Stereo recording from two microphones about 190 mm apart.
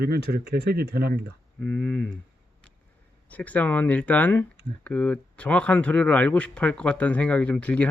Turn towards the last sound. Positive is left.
turn(degrees=5)  # may be behind; listen again after turning